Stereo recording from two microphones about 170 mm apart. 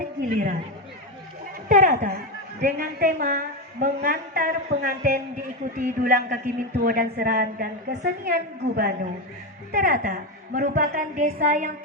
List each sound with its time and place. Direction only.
1.7 s a woman's voice: 55° right (ahead or behind)